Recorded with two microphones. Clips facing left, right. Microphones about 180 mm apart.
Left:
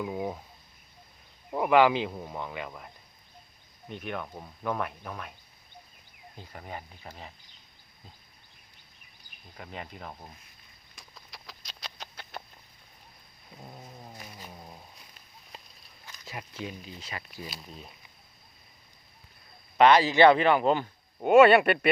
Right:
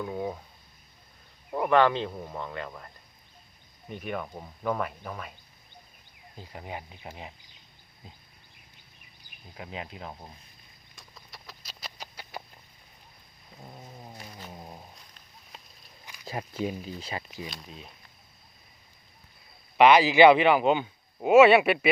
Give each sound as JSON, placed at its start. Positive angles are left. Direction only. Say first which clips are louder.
{"t": 0.0, "sound": "a man's voice", "louder": "even", "side_deg": 5}
{"t": 1.5, "sound": "a man's voice", "louder": "left 1 dB", "side_deg": 5}
{"t": 6.3, "sound": "speech", "louder": "right 2 dB", "side_deg": -5}
{"t": 9.6, "sound": "a man's voice", "louder": "right 2 dB", "side_deg": -5}
{"t": 10.9, "sound": "a sound", "louder": "even", "side_deg": 0}
{"t": 13.7, "sound": "cat", "louder": "right 1 dB", "side_deg": 0}
{"t": 14.5, "sound": "cat", "louder": "right 3 dB", "side_deg": -20}
{"t": 16.2, "sound": "speech", "louder": "right 7 dB", "side_deg": -35}
{"t": 17.4, "sound": "a man's voice", "louder": "right 1 dB", "side_deg": 5}
{"t": 19.7, "sound": "a man's voice", "louder": "right 2 dB", "side_deg": -5}